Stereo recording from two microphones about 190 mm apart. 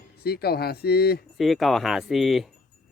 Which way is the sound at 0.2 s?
55° left (ahead or behind).